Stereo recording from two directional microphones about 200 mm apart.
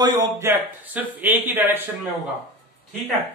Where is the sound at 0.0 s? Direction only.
15° right (ahead or behind).